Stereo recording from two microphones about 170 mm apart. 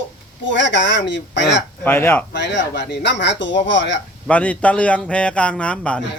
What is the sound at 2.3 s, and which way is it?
Speech, 90° left.